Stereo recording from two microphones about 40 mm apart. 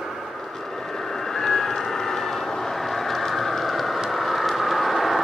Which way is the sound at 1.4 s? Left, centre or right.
Centre.